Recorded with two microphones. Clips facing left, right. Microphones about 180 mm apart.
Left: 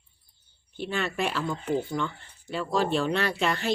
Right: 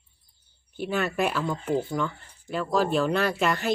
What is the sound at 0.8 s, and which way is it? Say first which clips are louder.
Speech: right 3 dB; 5° right (ahead or behind).